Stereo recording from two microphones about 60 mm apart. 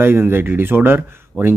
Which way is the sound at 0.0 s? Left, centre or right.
Right.